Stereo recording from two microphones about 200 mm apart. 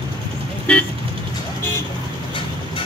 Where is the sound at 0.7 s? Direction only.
5° left (ahead or behind).